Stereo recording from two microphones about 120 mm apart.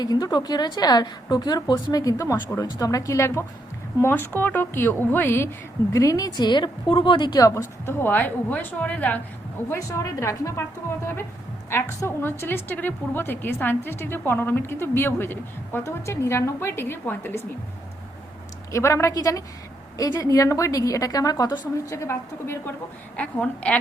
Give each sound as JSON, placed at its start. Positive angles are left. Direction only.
{"t": 0.0, "sound": "a woman's voice", "side_deg": 35}
{"t": 9.6, "sound": "a woman's voice", "side_deg": 25}
{"t": 18.7, "sound": "a woman's voice", "side_deg": 20}
{"t": 21.9, "sound": "a woman's voice", "side_deg": 20}